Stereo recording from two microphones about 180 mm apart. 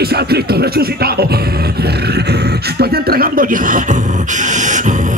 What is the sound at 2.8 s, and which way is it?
A man's voice, 55° right (ahead or behind).